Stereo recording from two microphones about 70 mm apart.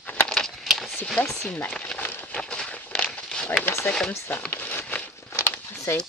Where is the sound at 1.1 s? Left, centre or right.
Centre.